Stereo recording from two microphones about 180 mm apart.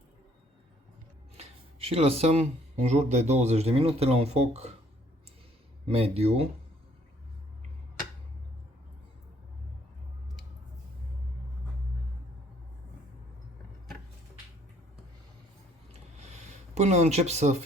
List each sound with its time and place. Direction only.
1.4 s speech: 35° right (ahead or behind)
5.9 s speech: 35° right (ahead or behind)
15.9 s a sound: 40° right (ahead or behind)